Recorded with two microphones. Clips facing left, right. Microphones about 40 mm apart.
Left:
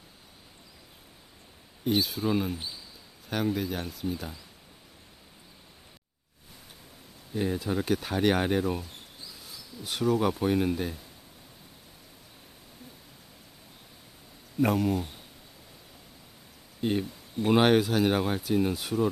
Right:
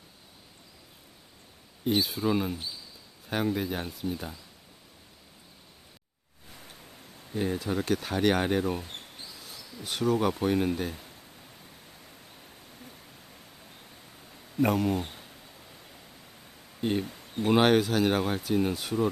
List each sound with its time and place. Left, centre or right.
1.8 s speech: centre
7.3 s speech: centre
8.9 s a sound: right
9.8 s speech: centre
14.6 s speech: centre
14.9 s speech: right
17.4 s speech: centre